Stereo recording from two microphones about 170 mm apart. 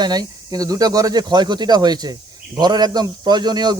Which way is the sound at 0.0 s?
25° right (ahead or behind).